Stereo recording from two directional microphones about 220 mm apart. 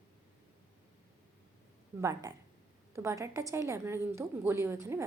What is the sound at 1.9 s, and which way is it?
A woman's voice, 15° right (ahead or behind).